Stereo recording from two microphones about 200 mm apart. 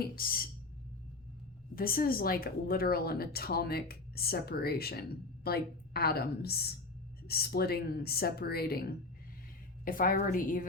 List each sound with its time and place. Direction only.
0.0 s speech: 45° left (ahead or behind)
1.7 s speech: 45° left (ahead or behind)